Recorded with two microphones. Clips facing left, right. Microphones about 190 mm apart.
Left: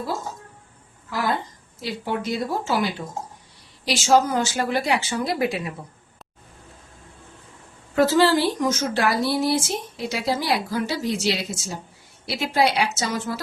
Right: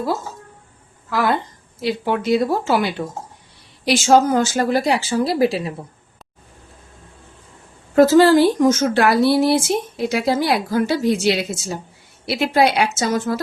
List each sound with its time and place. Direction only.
1.1 s speech: 70° right (ahead or behind)
3.8 s a woman's voice: 50° right (ahead or behind); by 5.7 s 30° right (ahead or behind)
7.9 s a woman's voice: 45° right (ahead or behind)